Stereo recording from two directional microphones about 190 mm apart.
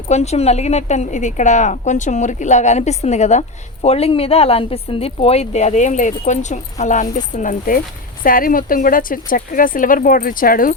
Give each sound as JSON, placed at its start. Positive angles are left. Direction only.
{"t": 0.1, "sound": "speech", "side_deg": 35}